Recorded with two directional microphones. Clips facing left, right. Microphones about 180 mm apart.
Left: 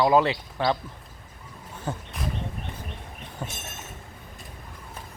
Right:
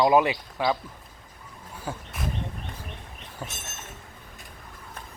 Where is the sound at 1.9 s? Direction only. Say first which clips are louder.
Left 2 dB; 10° right (ahead or behind).